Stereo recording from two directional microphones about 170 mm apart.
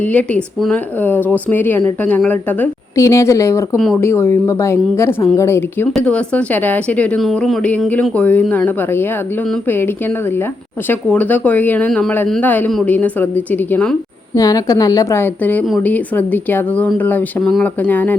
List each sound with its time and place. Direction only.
0.0 s speech: 10° left (ahead or behind)
5.9 s speech: 5° left (ahead or behind)
14.3 s a woman's voice: 20° left (ahead or behind)